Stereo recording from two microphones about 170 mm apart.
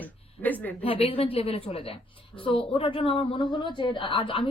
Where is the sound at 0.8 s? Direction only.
35° left (ahead or behind).